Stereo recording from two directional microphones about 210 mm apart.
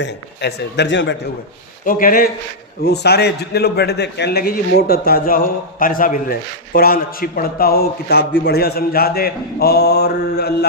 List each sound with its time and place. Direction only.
0.0 s a man's voice: 55° left (ahead or behind)
1.8 s a man's voice: 40° left (ahead or behind)